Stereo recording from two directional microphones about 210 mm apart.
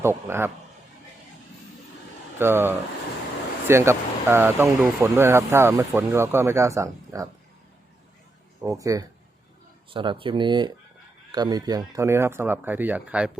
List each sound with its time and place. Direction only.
0.0 s speech: 10° right (ahead or behind)
2.4 s speech: 10° right (ahead or behind)
8.6 s speech: 15° right (ahead or behind)